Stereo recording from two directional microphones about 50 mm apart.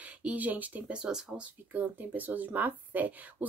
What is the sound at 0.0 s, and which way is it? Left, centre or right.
Speech, right.